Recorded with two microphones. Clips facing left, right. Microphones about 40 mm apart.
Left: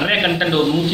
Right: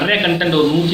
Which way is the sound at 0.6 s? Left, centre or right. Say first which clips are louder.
Right 4 dB; right.